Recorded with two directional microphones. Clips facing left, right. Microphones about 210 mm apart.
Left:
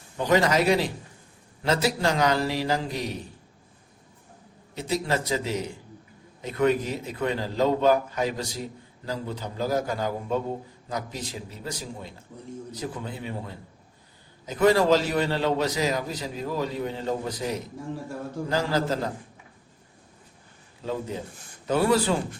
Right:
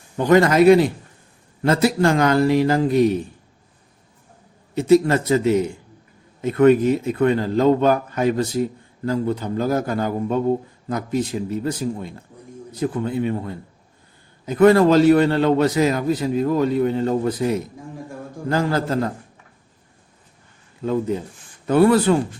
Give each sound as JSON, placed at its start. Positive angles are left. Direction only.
{"t": 0.2, "sound": "a man's voice", "side_deg": -50}
{"t": 4.7, "sound": "a man's voice", "side_deg": -50}
{"t": 20.8, "sound": "a man's voice", "side_deg": -55}